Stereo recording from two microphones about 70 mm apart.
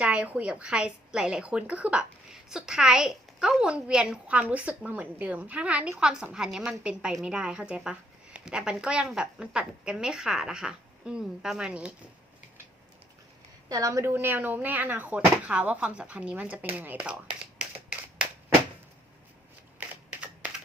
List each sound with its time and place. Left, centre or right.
0.0 s speech: centre
13.7 s a woman's voice: right
14.1 s speech: right; by 17.7 s centre
19.9 s a sound: centre